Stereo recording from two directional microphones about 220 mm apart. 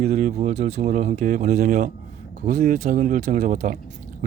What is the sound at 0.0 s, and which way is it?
Speech, 30° right (ahead or behind).